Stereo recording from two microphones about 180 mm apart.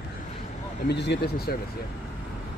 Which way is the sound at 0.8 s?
70° left (ahead or behind).